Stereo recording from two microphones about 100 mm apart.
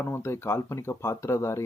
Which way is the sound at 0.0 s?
25° left (ahead or behind).